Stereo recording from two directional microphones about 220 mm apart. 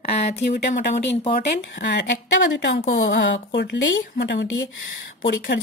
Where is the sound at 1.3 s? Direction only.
50° left (ahead or behind).